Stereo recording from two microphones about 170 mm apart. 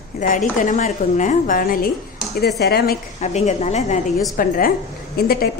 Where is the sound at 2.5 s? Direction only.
70° left (ahead or behind).